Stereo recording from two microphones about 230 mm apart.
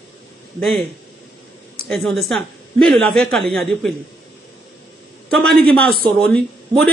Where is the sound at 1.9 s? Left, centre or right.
Centre.